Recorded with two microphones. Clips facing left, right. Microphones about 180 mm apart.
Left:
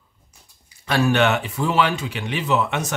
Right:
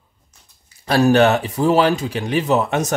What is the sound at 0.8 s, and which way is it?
Speech, 40° right (ahead or behind).